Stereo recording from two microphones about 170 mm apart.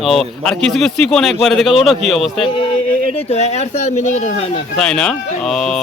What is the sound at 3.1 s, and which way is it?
Speech, 40° left (ahead or behind).